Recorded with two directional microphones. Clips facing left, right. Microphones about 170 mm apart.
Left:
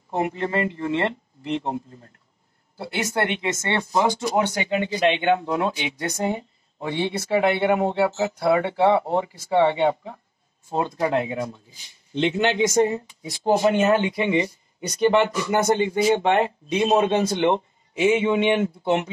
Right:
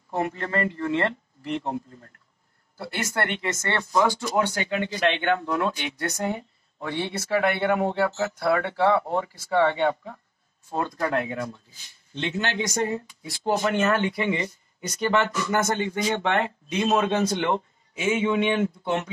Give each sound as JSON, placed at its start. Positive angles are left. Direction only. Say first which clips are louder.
{"t": 0.1, "sound": "speech", "louder": "left 3 dB", "side_deg": 20}
{"t": 16.8, "sound": "speech", "louder": "left 3 dB", "side_deg": 30}
{"t": 18.3, "sound": "speech", "louder": "left 3 dB", "side_deg": 25}